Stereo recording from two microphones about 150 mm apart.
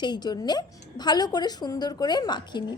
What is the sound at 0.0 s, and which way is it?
A woman's voice, 30° left (ahead or behind).